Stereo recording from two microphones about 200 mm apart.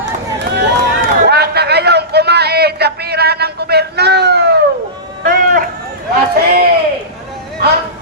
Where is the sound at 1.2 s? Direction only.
55° right (ahead or behind).